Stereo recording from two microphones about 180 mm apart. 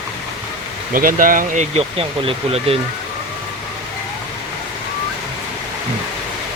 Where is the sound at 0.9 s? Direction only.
50° right (ahead or behind); by 2.7 s 30° right (ahead or behind).